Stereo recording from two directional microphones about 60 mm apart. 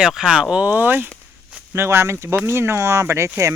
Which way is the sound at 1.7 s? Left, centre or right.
Right.